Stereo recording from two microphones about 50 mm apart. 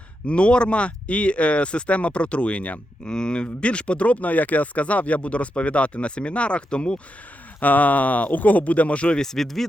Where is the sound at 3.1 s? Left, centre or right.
Centre.